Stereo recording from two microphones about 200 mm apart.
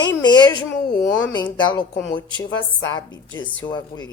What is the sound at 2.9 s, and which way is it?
Speech, 20° left (ahead or behind).